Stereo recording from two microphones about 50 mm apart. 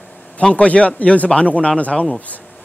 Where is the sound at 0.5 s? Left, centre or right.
Left.